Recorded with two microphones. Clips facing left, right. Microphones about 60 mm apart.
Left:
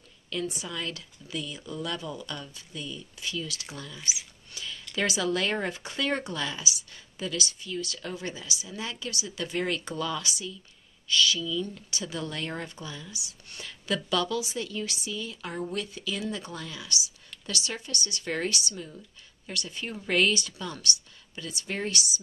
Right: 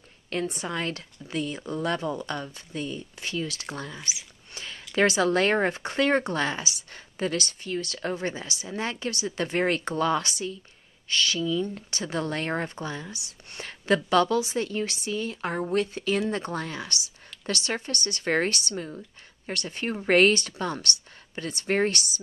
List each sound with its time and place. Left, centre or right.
0.3 s speech: right
4.6 s a sound: right
4.9 s speech: right